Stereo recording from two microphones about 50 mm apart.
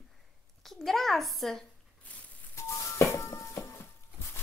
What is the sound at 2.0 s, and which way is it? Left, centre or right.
Telephone dialing, left.